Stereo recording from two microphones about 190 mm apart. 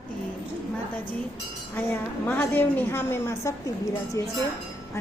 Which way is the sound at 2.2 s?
10° left (ahead or behind).